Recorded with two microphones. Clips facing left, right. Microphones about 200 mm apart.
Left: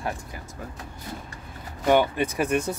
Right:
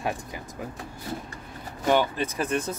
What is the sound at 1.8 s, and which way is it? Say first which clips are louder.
Speech: left 3 dB; 10° left (ahead or behind).